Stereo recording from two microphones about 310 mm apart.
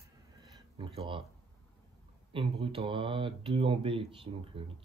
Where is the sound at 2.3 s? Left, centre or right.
Centre.